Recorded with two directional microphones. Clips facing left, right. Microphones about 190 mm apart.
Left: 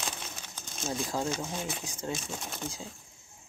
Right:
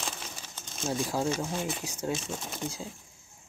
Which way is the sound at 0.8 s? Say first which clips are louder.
Right 3 dB; 10° right (ahead or behind).